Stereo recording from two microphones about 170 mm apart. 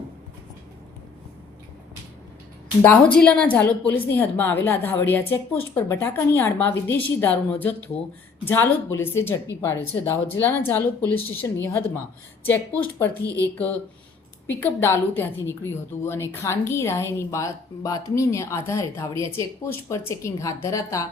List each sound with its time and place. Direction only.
2.8 s a woman's voice: 5° left (ahead or behind)
14.4 s a woman's voice: 15° left (ahead or behind)